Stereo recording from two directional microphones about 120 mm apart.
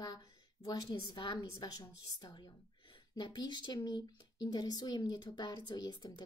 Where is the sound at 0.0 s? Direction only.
35° left (ahead or behind).